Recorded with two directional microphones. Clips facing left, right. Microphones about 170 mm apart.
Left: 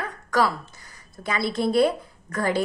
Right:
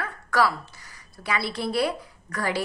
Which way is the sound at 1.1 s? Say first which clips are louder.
Left 3 dB; 45° left (ahead or behind).